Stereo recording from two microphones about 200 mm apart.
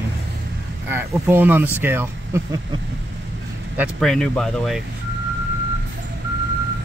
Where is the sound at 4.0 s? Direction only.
Centre (ahead or behind).